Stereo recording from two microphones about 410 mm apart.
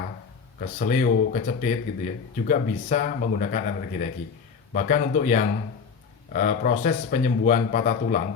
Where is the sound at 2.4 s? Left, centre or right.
Centre.